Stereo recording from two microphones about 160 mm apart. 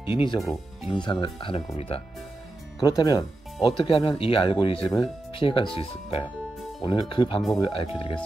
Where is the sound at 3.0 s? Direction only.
25° left (ahead or behind).